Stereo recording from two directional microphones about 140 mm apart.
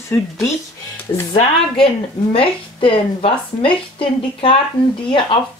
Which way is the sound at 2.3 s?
40° left (ahead or behind).